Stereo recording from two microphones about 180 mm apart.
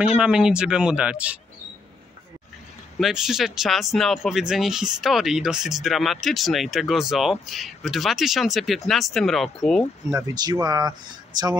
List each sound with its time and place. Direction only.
0.2 s speech: 5° right (ahead or behind)
3.0 s speech: 5° right (ahead or behind)
10.1 s speech: 20° right (ahead or behind)